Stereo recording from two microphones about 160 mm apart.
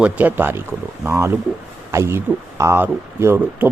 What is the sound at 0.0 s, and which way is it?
Speech, 10° right (ahead or behind).